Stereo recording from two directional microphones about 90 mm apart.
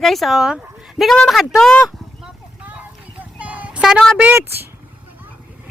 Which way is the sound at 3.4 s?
15° right (ahead or behind).